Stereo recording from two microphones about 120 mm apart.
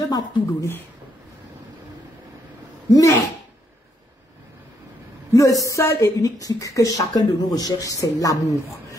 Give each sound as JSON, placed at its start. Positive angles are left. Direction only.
{"t": 0.1, "sound": "speech", "side_deg": 25}
{"t": 2.9, "sound": "speech", "side_deg": 25}
{"t": 5.3, "sound": "speech", "side_deg": 30}